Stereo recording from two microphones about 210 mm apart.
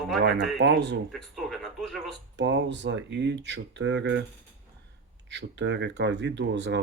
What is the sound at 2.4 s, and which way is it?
Speech, 60° right (ahead or behind).